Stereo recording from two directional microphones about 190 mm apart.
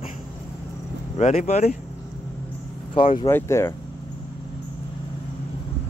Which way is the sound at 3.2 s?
15° left (ahead or behind).